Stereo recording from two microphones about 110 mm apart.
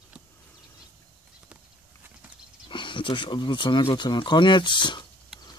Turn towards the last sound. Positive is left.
turn(degrees=45)  # may be behind; listen again after turning